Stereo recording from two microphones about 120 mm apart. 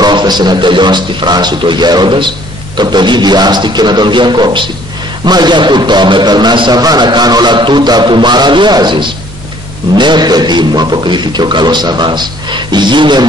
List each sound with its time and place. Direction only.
0.0 s a man's voice: 35° right (ahead or behind)